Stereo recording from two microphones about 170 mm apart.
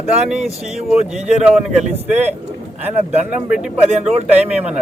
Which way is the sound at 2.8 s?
40° right (ahead or behind).